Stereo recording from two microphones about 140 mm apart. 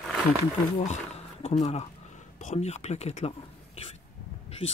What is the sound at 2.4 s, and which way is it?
Speech, 55° left (ahead or behind).